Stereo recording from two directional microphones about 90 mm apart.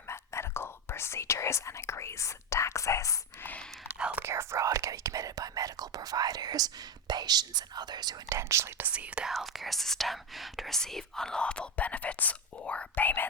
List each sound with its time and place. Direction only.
0.1 s speech: 30° left (ahead or behind)
3.4 s speech: 15° left (ahead or behind)
3.8 s speech: 15° right (ahead or behind)
4.2 s speech: 30° right (ahead or behind); by 8.4 s 50° right (ahead or behind)
8.4 s speech: 30° right (ahead or behind)
8.8 s speech: 15° right (ahead or behind)
9.3 s speech: centre (ahead or behind); by 13.2 s 20° left (ahead or behind)